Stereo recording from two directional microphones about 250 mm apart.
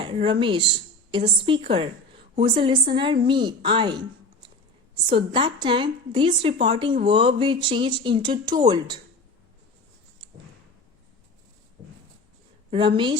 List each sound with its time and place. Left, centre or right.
0.0 s a woman's voice: centre
5.0 s a woman's voice: right
12.7 s a woman's voice: centre